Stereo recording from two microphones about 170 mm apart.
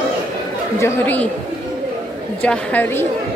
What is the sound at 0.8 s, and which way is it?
Speech, 10° left (ahead or behind).